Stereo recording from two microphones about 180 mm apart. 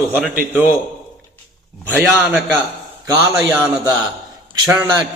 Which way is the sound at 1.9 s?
10° right (ahead or behind).